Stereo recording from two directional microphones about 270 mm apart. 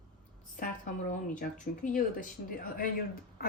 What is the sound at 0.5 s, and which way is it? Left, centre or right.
Speech, left.